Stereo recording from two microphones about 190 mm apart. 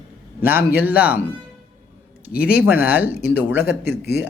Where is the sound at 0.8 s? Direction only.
10° right (ahead or behind).